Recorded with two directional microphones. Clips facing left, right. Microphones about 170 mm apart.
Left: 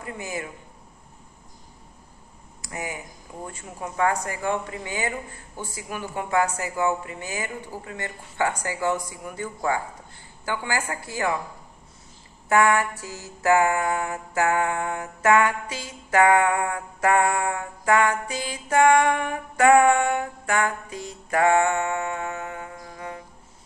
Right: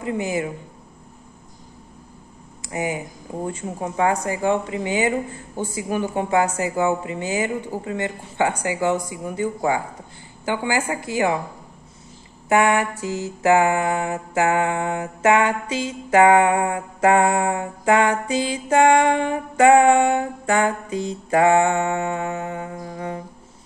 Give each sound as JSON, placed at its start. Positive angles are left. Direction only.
{"t": 0.0, "sound": "mantra", "side_deg": -20}
{"t": 2.6, "sound": "mantra", "side_deg": -25}
{"t": 12.4, "sound": "mantra", "side_deg": -20}